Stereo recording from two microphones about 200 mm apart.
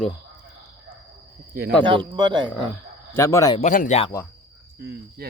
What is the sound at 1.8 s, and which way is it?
Speech, 25° right (ahead or behind).